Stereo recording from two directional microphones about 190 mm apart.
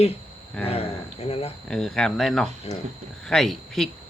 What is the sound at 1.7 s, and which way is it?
Speech, centre (ahead or behind).